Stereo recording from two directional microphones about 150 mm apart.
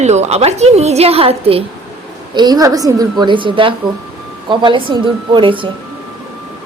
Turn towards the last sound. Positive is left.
turn(degrees=-35)  # may be behind; listen again after turning